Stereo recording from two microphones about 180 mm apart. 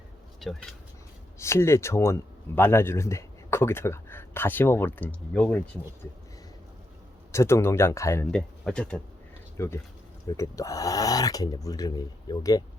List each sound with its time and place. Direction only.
0.3 s speech: centre (ahead or behind)
1.4 s speech: 15° left (ahead or behind)
7.3 s speech: 15° left (ahead or behind)